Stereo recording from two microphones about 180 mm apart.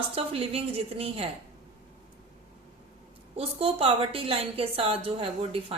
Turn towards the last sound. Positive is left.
turn(degrees=-35)  # may be behind; listen again after turning